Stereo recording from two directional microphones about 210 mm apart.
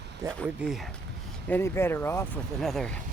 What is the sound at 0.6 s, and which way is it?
Speech, 5° right (ahead or behind).